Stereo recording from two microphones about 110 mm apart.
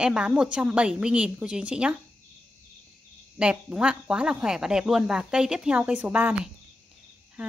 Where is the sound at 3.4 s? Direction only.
10° right (ahead or behind).